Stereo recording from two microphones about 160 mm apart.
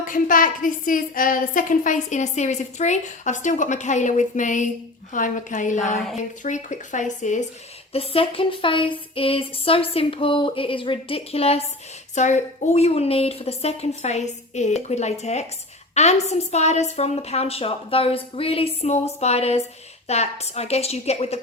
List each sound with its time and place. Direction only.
0.0 s a woman's voice: 55° left (ahead or behind)
7.9 s a woman's voice: 35° left (ahead or behind)